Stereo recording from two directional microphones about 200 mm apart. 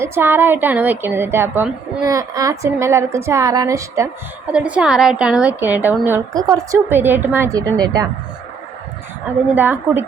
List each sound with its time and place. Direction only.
0.0 s a woman's voice: 10° right (ahead or behind)
9.6 s a woman's voice: 10° right (ahead or behind)